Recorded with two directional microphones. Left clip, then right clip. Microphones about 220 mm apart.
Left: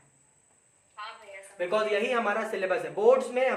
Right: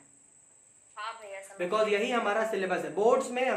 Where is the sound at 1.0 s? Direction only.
40° right (ahead or behind).